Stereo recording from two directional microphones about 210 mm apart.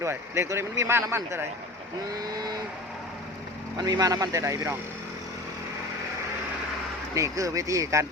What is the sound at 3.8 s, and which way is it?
A man's voice, 20° right (ahead or behind).